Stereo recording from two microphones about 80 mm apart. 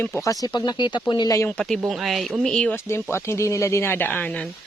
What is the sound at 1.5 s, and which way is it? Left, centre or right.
Speech, centre.